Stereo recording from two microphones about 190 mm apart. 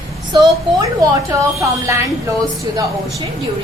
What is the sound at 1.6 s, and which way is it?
A woman's voice, 15° right (ahead or behind).